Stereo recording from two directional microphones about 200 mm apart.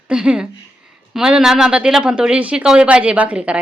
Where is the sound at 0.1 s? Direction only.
5° right (ahead or behind).